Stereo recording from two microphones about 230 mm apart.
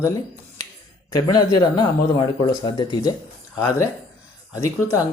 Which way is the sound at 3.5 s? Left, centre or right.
Centre.